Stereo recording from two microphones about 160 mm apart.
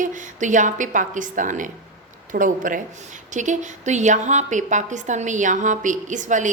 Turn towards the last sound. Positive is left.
turn(degrees=-50)  # may be behind; listen again after turning